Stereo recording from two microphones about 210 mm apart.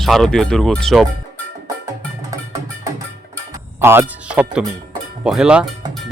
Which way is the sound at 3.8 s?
10° right (ahead or behind).